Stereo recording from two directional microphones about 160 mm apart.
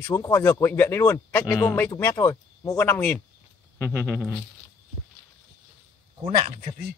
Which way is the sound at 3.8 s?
15° right (ahead or behind).